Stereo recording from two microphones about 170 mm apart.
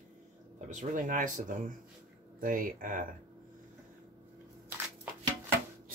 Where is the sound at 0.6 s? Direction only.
50° right (ahead or behind).